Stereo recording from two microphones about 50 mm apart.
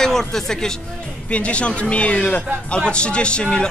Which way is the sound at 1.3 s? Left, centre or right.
Left.